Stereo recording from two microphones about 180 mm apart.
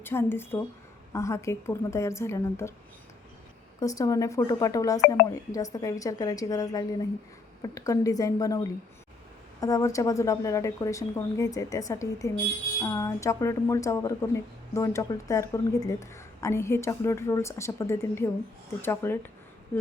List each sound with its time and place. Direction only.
0.0 s speech: 10° left (ahead or behind)
3.8 s speech: 20° left (ahead or behind)